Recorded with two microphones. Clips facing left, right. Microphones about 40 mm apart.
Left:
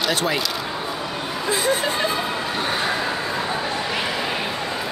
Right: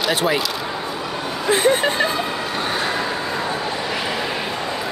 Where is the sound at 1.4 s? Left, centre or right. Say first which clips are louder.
Right 5 dB; right.